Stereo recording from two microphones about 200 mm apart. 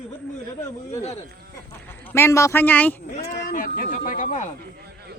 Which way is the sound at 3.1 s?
40° left (ahead or behind).